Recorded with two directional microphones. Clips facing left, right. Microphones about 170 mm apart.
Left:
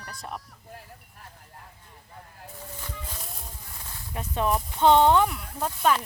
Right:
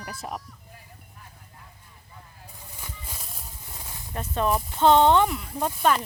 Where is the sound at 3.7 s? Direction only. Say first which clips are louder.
Right 5 dB; 15° right (ahead or behind).